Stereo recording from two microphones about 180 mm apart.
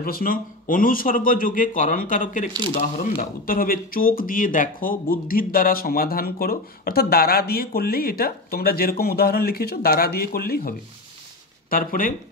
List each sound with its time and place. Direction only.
0.0 s speech: 55° left (ahead or behind)